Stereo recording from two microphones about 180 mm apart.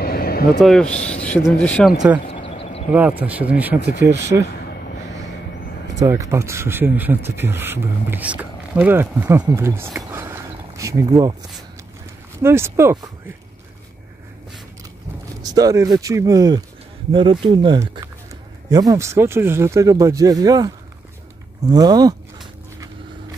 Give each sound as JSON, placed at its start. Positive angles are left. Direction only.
{"t": 0.0, "sound": "vehicle", "side_deg": 60}
{"t": 0.6, "sound": "speech", "side_deg": 0}
{"t": 0.8, "sound": "speech", "side_deg": 40}
{"t": 1.1, "sound": "speech", "side_deg": 5}
{"t": 2.3, "sound": "a sound", "side_deg": 30}
{"t": 2.9, "sound": "speech", "side_deg": -10}
{"t": 5.9, "sound": "speech", "side_deg": -15}
{"t": 12.4, "sound": "speech", "side_deg": -15}
{"t": 15.4, "sound": "speech", "side_deg": -20}